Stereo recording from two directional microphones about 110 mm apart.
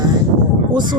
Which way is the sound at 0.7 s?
40° right (ahead or behind).